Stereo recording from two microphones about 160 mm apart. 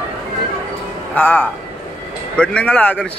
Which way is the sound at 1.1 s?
10° left (ahead or behind).